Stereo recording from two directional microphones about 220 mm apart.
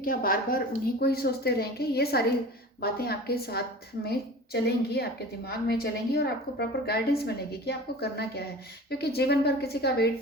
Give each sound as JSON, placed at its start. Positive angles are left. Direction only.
{"t": 0.0, "sound": "a woman's voice", "side_deg": 40}